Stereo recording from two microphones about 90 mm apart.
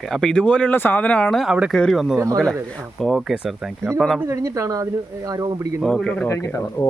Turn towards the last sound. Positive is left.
turn(degrees=5)  # may be behind; listen again after turning